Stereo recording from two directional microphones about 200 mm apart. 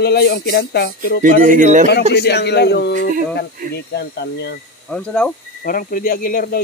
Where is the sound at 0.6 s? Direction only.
65° left (ahead or behind).